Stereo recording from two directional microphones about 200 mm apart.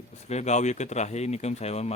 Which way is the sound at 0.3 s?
35° left (ahead or behind).